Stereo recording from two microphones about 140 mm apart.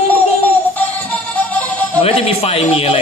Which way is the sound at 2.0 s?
45° left (ahead or behind).